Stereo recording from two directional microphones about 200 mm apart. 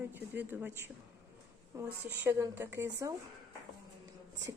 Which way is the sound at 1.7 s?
15° right (ahead or behind).